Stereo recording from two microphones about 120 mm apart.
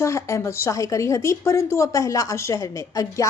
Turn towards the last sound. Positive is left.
turn(degrees=30)  # may be behind; listen again after turning